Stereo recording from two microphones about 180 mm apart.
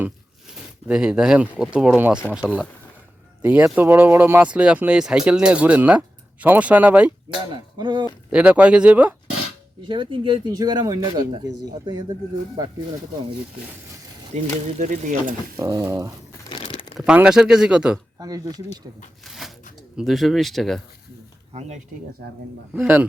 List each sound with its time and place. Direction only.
0.0 s speech: 5° right (ahead or behind)
7.5 s speech: 25° right (ahead or behind)
8.3 s speech: 5° right (ahead or behind)
9.9 s speech: 25° right (ahead or behind)
14.3 s speech: 40° right (ahead or behind)
15.5 s speech: 15° right (ahead or behind)
16.5 s crumpling: 30° left (ahead or behind)
17.0 s speech: 5° right (ahead or behind)
18.2 s speech: 20° right (ahead or behind)
19.2 s a sound: centre (ahead or behind)
20.0 s speech: centre (ahead or behind)
22.7 s speech: 5° right (ahead or behind)